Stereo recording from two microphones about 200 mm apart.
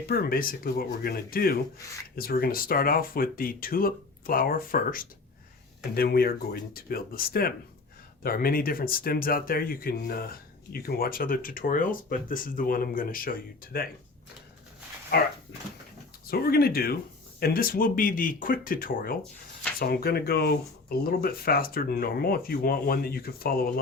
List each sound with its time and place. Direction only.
0.1 s speech: 50° left (ahead or behind)
15.1 s speech: 55° left (ahead or behind)